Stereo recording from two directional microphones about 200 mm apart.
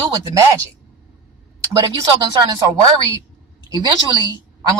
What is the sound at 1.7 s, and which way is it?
Speech, 20° right (ahead or behind).